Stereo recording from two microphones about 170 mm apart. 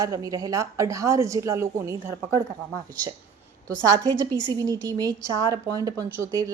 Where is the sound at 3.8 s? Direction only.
20° right (ahead or behind).